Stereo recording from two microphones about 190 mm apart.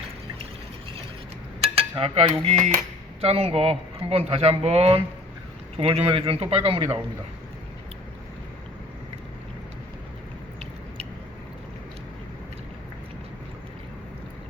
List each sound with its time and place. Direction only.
2.0 s speech: 30° right (ahead or behind)